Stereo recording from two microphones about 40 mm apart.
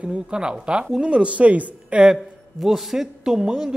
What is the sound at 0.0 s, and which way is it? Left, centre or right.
Speech, right.